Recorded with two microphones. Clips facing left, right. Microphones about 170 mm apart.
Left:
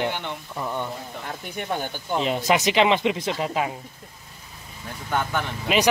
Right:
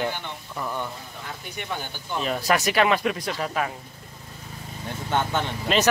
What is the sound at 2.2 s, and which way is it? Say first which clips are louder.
Speech: left 2 dB; 20° left (ahead or behind).